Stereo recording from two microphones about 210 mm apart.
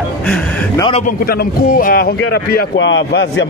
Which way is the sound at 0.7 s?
25° left (ahead or behind).